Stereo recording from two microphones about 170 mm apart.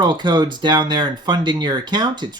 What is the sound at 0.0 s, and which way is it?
Speech, 25° right (ahead or behind).